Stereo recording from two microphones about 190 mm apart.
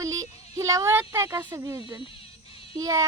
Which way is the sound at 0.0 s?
15° right (ahead or behind).